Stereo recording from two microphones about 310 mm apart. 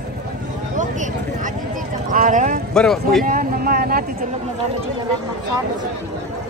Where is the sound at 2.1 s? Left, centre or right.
Right.